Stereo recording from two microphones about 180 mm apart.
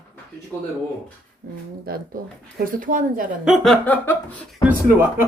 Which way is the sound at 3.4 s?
Centre (ahead or behind).